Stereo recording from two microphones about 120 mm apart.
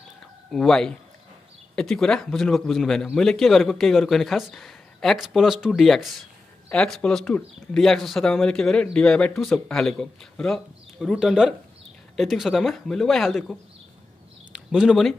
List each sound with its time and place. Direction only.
0.5 s speech: 5° left (ahead or behind)